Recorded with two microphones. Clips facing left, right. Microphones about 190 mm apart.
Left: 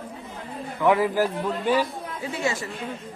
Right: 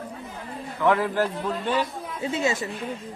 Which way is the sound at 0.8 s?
10° left (ahead or behind).